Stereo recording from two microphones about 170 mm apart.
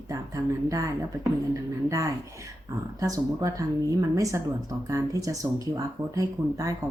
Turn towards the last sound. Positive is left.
turn(degrees=-20)  # may be behind; listen again after turning